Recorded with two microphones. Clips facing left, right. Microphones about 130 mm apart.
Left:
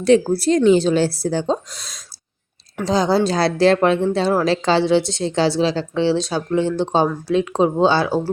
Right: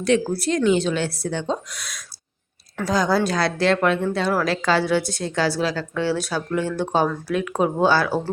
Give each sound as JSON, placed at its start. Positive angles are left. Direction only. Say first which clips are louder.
{"t": 0.0, "sound": "speech", "louder": "left 5 dB", "side_deg": 35}